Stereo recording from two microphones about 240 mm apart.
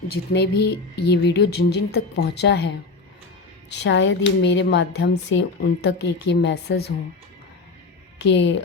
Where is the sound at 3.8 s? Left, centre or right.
Left.